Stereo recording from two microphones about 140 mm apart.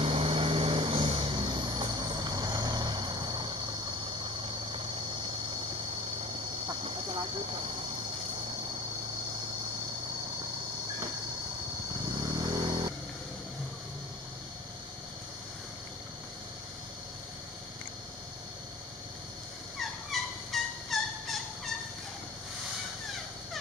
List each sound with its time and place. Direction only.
0.0 s vehicle: 40° right (ahead or behind)
12.0 s vehicle: 30° right (ahead or behind)
19.8 s fowl: centre (ahead or behind)